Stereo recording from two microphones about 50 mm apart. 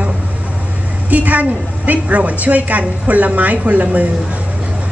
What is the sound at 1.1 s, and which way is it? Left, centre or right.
A woman's voice, right.